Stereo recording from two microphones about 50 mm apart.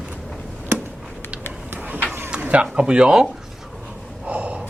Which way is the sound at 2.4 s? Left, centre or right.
Right.